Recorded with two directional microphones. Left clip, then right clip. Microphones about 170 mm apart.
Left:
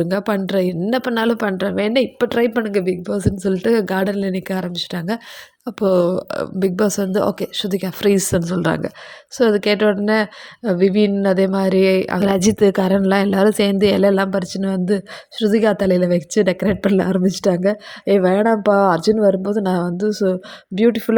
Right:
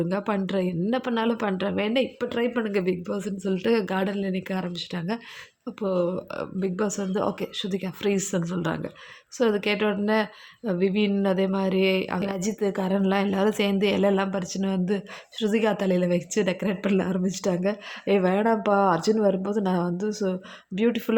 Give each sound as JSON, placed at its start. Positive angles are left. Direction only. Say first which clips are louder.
{"t": 0.0, "sound": "a woman's voice", "louder": "left 7 dB", "side_deg": 25}
{"t": 2.1, "sound": "a woman's voice", "louder": "left 9 dB", "side_deg": 45}
{"t": 5.6, "sound": "a woman's voice", "louder": "left 10 dB", "side_deg": 40}